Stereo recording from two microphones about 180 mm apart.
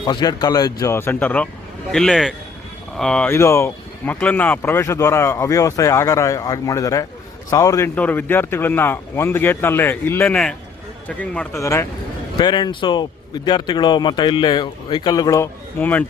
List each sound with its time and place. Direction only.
0.0 s a man's voice: 25° left (ahead or behind); by 3.3 s 5° left (ahead or behind)
3.3 s a man's voice: 15° left (ahead or behind)